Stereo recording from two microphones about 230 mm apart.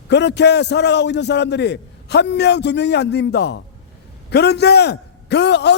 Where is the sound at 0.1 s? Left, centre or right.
Left.